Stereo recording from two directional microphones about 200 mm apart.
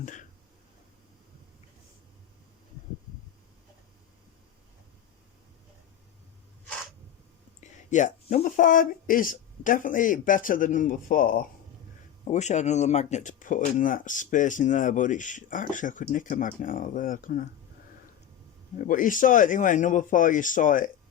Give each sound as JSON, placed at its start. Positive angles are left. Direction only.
{"t": 0.0, "sound": "speech", "side_deg": 40}
{"t": 7.6, "sound": "speech", "side_deg": 35}
{"t": 18.9, "sound": "speech", "side_deg": 40}